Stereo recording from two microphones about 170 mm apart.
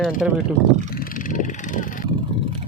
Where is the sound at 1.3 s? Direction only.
50° left (ahead or behind).